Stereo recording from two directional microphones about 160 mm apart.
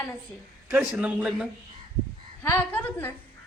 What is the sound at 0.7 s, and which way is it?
Speech, 10° right (ahead or behind).